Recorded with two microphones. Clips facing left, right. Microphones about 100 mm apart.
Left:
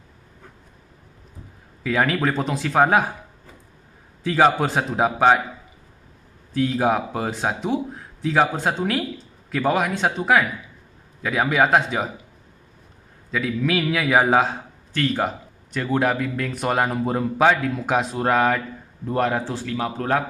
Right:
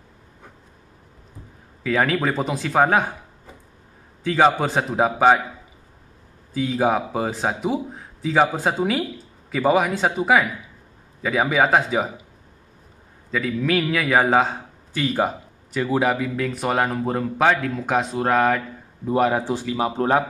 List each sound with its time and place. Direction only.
1.8 s speech: centre (ahead or behind)
4.2 s speech: centre (ahead or behind)
6.5 s speech: centre (ahead or behind)
13.3 s speech: 5° left (ahead or behind)
15.0 s speech: 10° right (ahead or behind)